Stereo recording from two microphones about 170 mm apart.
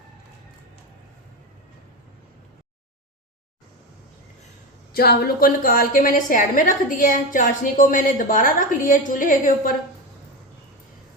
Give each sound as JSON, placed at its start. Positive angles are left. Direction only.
{"t": 4.9, "sound": "a woman's voice", "side_deg": 65}